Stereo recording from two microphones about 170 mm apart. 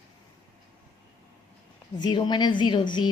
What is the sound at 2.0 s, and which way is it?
A woman's voice, 25° left (ahead or behind).